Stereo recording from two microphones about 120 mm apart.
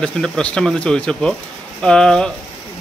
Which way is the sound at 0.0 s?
10° left (ahead or behind).